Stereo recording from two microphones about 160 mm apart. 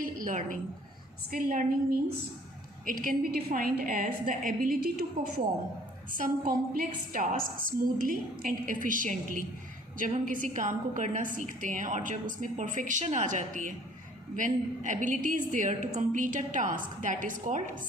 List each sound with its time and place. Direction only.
0.0 s a sound: 55° right (ahead or behind)
1.3 s a woman's voice: 65° right (ahead or behind)
6.1 s a woman's voice: 60° right (ahead or behind)